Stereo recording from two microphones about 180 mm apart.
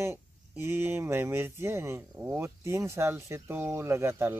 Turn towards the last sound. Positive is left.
turn(degrees=-15)  # may be behind; listen again after turning